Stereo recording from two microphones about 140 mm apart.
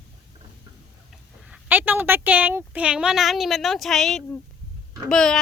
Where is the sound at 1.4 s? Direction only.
10° right (ahead or behind).